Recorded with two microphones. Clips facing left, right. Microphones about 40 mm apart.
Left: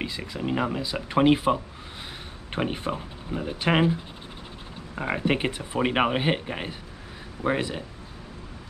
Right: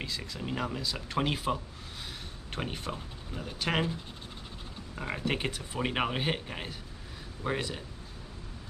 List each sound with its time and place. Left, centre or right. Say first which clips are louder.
0.0 s speech: left 7 dB; left